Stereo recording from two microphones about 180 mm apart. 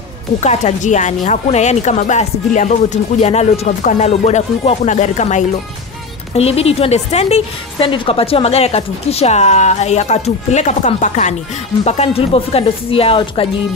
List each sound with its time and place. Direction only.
0.4 s a woman's voice: 40° left (ahead or behind)